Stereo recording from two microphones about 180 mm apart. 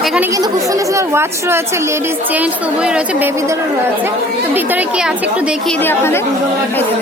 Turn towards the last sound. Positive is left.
turn(degrees=15)  # may be behind; listen again after turning